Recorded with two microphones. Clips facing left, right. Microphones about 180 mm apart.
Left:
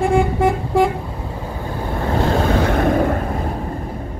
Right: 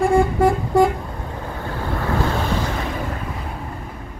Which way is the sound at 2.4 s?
60° left (ahead or behind).